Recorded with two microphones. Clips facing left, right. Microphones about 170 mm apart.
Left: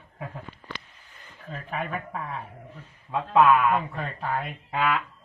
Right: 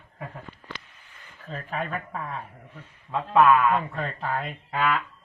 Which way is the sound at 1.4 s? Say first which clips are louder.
Right 1 dB; 5° left (ahead or behind).